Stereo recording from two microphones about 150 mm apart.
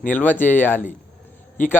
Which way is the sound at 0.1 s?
10° left (ahead or behind).